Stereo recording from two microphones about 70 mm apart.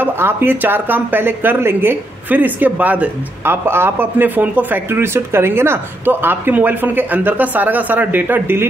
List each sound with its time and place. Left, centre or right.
0.0 s speech: right